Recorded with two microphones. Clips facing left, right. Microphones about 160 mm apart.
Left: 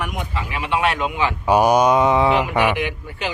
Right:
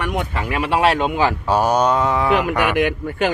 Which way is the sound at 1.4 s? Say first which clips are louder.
Left 5 dB; 15° left (ahead or behind).